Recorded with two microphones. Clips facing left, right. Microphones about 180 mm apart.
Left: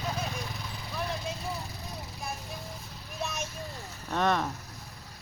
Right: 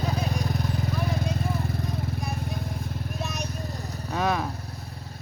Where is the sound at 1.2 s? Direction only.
50° right (ahead or behind).